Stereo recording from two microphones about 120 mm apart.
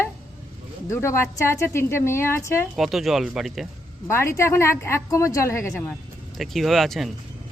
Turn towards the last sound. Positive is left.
turn(degrees=0)  # may be behind; listen again after turning